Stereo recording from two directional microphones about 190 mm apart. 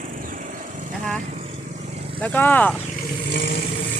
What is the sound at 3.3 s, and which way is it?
Vehicle, 70° left (ahead or behind).